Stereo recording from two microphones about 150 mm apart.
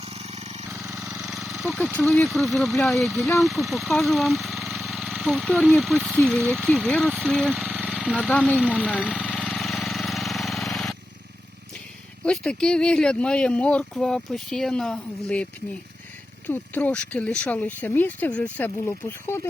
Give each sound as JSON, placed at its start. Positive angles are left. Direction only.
{"t": 0.0, "sound": "vehicle", "side_deg": -45}
{"t": 1.2, "sound": "a sound", "side_deg": 0}
{"t": 2.0, "sound": "speech", "side_deg": 5}
{"t": 9.2, "sound": "engine", "side_deg": 5}
{"t": 12.2, "sound": "speech", "side_deg": 5}
{"t": 16.5, "sound": "speech", "side_deg": 10}